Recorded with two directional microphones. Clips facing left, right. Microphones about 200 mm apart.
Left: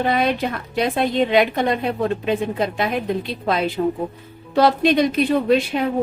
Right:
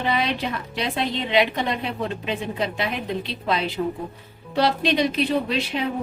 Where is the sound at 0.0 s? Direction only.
50° left (ahead or behind).